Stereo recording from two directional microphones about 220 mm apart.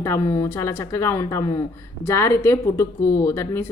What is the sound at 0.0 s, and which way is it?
Speech, 10° left (ahead or behind).